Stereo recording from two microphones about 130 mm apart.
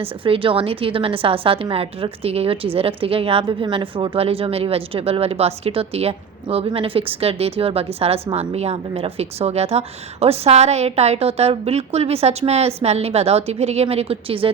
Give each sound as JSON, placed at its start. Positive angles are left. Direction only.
{"t": 0.0, "sound": "a woman's voice", "side_deg": -45}